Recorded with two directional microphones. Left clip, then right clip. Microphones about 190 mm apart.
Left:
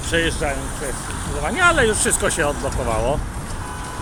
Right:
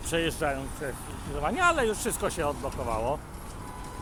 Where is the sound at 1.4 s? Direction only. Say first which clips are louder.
Left 8 dB; 15° right (ahead or behind).